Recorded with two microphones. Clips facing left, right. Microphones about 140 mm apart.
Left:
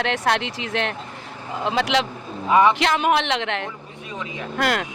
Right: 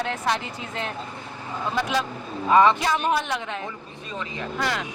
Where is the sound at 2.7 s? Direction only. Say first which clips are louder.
Left 4 dB; 90° left.